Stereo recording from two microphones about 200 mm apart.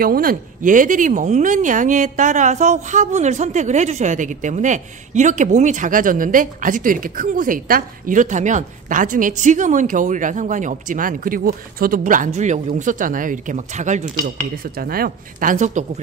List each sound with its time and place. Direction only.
0.0 s speech: 45° right (ahead or behind)
14.6 s speech: 45° right (ahead or behind)